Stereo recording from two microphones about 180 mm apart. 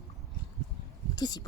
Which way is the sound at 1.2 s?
20° left (ahead or behind).